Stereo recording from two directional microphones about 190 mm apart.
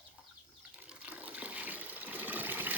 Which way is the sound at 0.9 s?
10° right (ahead or behind).